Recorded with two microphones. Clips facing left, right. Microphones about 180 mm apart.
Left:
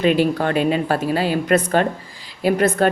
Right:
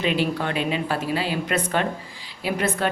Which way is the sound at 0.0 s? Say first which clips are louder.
Left 6 dB; 45° left (ahead or behind).